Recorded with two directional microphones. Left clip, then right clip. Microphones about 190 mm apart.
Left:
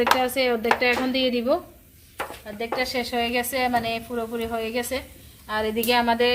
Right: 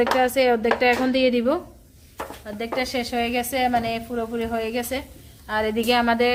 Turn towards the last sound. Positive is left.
turn(degrees=0)  # may be behind; listen again after turning